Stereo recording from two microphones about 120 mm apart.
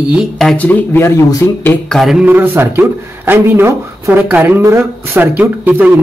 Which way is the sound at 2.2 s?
15° right (ahead or behind).